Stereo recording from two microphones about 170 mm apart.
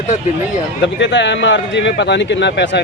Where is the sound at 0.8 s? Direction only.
90° left.